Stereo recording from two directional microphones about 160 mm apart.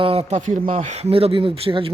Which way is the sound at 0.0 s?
35° right (ahead or behind).